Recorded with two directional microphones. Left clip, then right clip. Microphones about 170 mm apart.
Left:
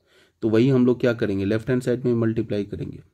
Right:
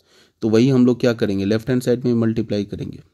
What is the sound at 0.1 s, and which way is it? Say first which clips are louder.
Speech: right 3 dB; 35° right (ahead or behind).